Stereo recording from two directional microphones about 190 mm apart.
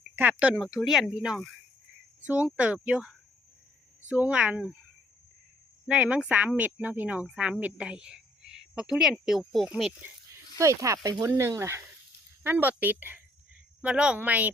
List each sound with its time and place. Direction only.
0.2 s speech: 10° right (ahead or behind)
5.9 s speech: 5° right (ahead or behind)
10.6 s speech: 15° right (ahead or behind)